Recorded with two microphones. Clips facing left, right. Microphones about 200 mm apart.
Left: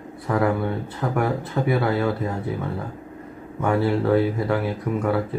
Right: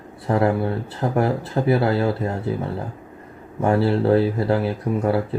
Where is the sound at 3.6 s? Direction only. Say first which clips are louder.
Right 2 dB; 30° right (ahead or behind).